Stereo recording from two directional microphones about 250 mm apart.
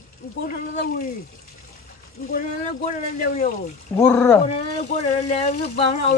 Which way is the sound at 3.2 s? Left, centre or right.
Left.